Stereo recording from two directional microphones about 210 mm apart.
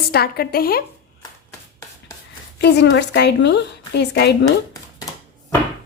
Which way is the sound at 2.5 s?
50° left (ahead or behind).